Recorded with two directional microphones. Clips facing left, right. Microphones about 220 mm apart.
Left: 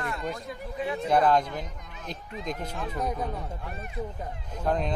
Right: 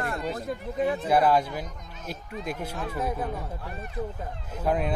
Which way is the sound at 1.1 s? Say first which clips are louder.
Left 1 dB; 5° right (ahead or behind).